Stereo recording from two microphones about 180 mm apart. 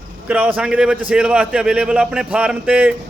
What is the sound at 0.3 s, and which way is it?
A man's voice, 10° right (ahead or behind).